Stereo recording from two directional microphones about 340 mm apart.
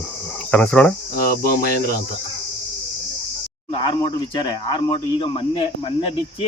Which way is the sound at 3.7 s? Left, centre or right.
Centre.